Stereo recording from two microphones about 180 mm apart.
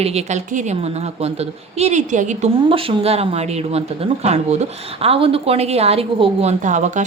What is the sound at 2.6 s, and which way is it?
A woman's voice, 30° right (ahead or behind).